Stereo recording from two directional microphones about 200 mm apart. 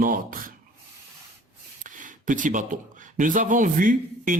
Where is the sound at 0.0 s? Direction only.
45° right (ahead or behind).